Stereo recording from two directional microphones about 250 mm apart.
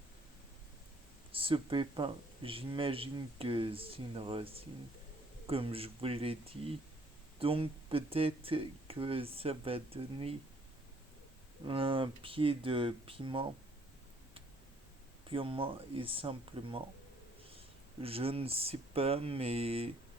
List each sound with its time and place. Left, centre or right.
1.3 s speech: right
11.6 s speech: right
15.3 s speech: right
18.0 s speech: right